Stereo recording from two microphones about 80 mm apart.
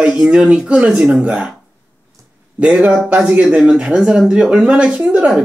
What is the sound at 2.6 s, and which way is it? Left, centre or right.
Speech, centre.